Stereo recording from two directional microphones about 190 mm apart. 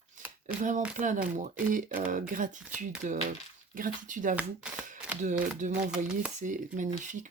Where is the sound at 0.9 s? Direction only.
40° right (ahead or behind).